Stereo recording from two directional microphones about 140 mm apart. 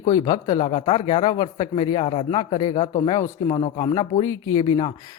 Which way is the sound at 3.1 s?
25° left (ahead or behind).